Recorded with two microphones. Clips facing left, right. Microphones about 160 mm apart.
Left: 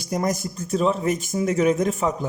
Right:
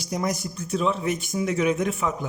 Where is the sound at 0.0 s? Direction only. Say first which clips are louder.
Left 3 dB; 45° left (ahead or behind).